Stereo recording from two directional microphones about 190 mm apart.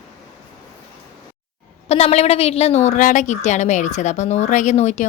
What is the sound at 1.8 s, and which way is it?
A woman's voice, 35° left (ahead or behind).